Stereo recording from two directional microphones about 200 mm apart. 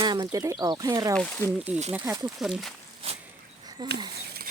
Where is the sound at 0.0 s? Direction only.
20° right (ahead or behind).